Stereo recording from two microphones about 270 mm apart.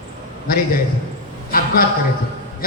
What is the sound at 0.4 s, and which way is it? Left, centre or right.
Speech, left.